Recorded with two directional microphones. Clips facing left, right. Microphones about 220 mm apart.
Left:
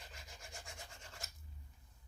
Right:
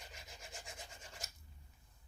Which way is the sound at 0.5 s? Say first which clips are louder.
Right 1 dB; 20° right (ahead or behind).